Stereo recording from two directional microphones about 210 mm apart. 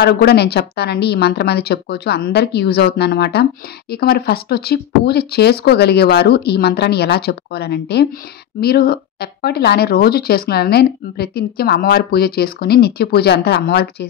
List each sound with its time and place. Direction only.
0.0 s speech: 50° left (ahead or behind)